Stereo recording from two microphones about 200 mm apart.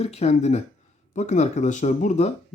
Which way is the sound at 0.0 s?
30° left (ahead or behind).